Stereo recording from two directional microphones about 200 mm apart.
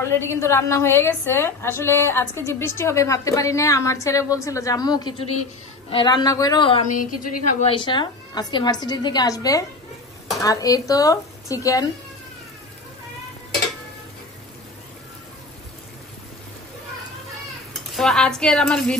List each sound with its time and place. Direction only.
0.0 s a woman's voice: 15° left (ahead or behind)
6.9 s a woman's voice: 40° left (ahead or behind)
7.7 s a woman's voice: 25° left (ahead or behind)
17.9 s speech: centre (ahead or behind)